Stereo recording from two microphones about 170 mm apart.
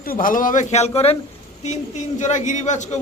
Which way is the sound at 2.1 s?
45° left (ahead or behind).